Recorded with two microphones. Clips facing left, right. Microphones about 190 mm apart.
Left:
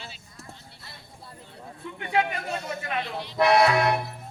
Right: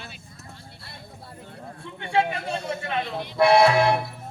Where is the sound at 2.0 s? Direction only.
30° right (ahead or behind).